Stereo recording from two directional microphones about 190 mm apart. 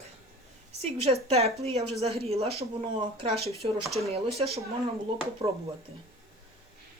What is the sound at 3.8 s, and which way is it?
Speech, centre (ahead or behind).